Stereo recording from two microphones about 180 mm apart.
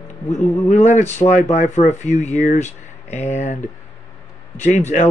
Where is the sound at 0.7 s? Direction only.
40° left (ahead or behind).